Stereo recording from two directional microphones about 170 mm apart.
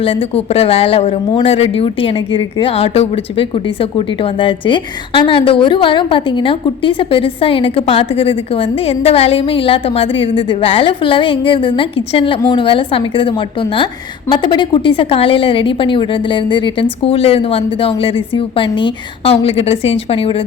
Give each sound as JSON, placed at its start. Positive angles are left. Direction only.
{"t": 0.0, "sound": "a woman's voice", "side_deg": 35}